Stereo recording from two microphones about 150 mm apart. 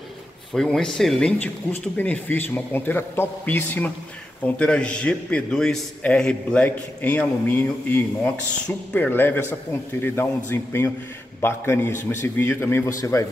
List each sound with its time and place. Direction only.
0.5 s a man's voice: centre (ahead or behind); by 13.3 s 20° left (ahead or behind)